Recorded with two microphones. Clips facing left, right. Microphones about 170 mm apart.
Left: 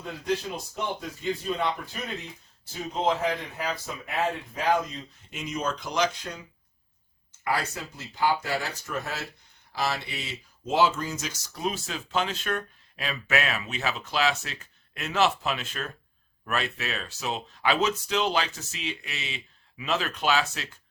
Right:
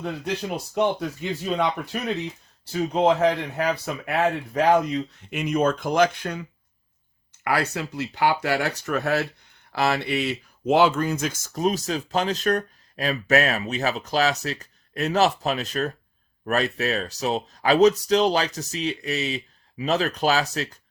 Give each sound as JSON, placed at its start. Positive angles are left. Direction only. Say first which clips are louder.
{"t": 0.5, "sound": "speech", "louder": "right 9 dB", "side_deg": -70}
{"t": 7.4, "sound": "speech", "louder": "right 5 dB", "side_deg": -65}